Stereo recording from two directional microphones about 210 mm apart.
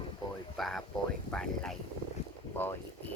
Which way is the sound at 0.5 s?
Centre (ahead or behind).